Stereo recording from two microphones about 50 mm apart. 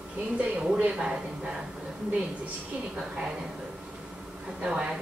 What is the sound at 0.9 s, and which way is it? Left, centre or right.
Speech, centre.